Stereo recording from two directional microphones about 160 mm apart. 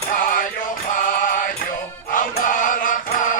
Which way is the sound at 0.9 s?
55° left (ahead or behind).